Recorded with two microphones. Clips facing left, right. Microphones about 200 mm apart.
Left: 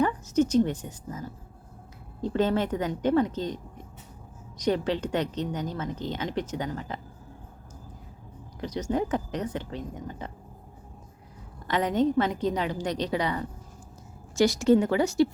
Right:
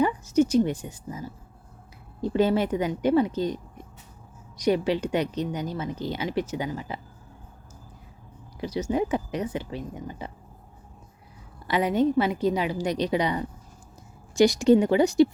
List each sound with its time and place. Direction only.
0.0 s a woman's voice: 10° right (ahead or behind)
8.6 s a woman's voice: 10° right (ahead or behind)
11.6 s a woman's voice: 10° right (ahead or behind)